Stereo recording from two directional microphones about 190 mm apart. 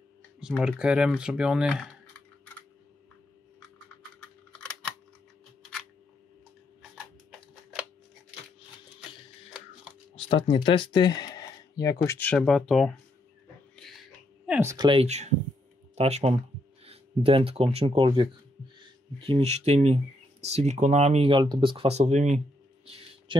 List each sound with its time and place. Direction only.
0.4 s speech: 5° right (ahead or behind)
10.1 s speech: 30° left (ahead or behind)
12.2 s speech: 5° left (ahead or behind)
13.7 s a sound: centre (ahead or behind)
14.7 s speech: 25° right (ahead or behind)
22.8 s a sound: 30° right (ahead or behind)